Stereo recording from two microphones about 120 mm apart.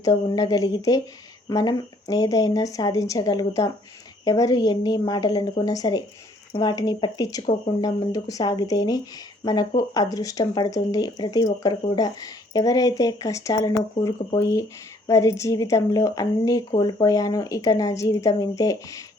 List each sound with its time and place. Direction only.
0.0 s speech: 30° left (ahead or behind)